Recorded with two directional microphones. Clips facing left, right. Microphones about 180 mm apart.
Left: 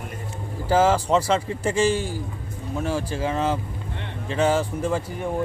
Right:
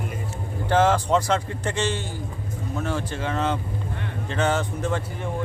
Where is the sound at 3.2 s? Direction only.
5° left (ahead or behind).